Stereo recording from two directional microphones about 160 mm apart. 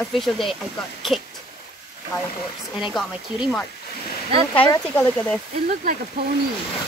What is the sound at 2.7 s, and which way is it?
Speech, centre (ahead or behind).